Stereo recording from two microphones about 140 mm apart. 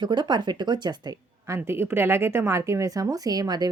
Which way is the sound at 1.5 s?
15° right (ahead or behind).